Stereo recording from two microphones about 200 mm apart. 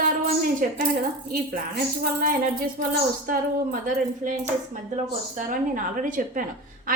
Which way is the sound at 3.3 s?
45° right (ahead or behind).